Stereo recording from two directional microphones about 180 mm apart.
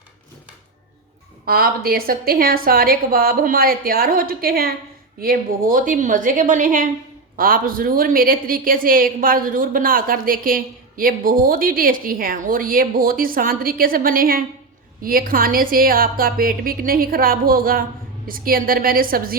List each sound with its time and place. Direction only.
1.5 s a woman's voice: 55° right (ahead or behind)